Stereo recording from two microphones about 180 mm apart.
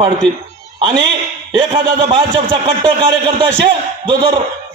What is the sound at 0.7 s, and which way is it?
A man's voice, 25° right (ahead or behind).